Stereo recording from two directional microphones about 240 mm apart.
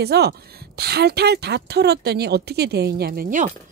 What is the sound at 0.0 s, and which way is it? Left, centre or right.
A woman's voice, right.